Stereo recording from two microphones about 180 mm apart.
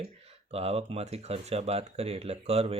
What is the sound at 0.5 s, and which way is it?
Speech, 35° right (ahead or behind).